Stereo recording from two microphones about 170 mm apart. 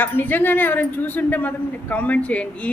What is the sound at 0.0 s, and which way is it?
A woman's voice, 10° left (ahead or behind).